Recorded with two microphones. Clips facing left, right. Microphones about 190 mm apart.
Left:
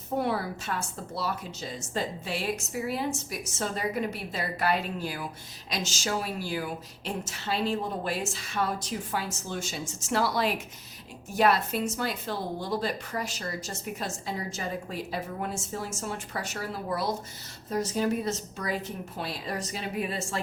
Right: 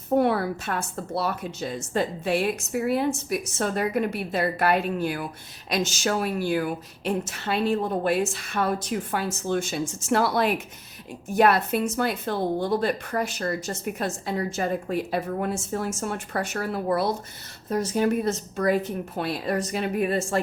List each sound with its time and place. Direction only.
0.2 s speech: 60° right (ahead or behind)